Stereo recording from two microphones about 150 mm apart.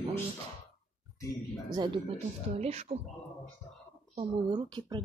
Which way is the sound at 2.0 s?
45° right (ahead or behind).